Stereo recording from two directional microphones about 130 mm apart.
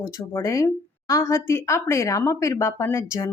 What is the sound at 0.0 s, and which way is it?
A woman's voice, 25° left (ahead or behind).